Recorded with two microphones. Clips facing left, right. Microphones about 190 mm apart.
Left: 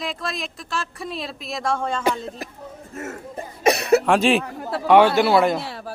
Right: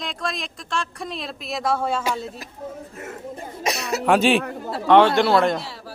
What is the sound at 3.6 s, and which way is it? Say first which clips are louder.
Cough: left 9 dB; 60° left (ahead or behind).